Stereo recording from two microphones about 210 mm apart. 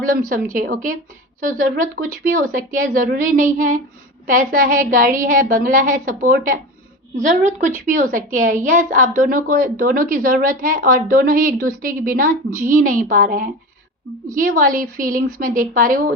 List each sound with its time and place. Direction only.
0.0 s a woman's voice: 40° right (ahead or behind)